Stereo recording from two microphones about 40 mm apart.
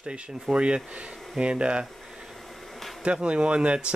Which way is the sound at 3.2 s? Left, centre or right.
Right.